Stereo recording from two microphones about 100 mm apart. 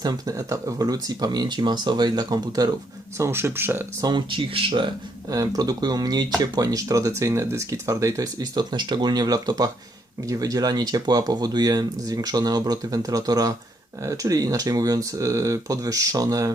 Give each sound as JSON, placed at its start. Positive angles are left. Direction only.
{"t": 0.0, "sound": "speech", "side_deg": -35}
{"t": 3.2, "sound": "speech", "side_deg": -25}
{"t": 4.0, "sound": "speech", "side_deg": -45}